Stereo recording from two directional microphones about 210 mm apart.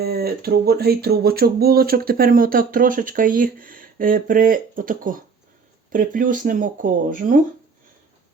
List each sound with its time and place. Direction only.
0.0 s speech: 50° right (ahead or behind)